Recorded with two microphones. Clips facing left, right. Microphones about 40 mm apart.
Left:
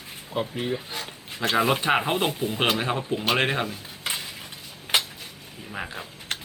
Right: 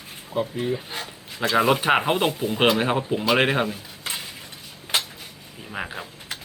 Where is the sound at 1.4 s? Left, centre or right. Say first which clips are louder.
Right 2 dB; right.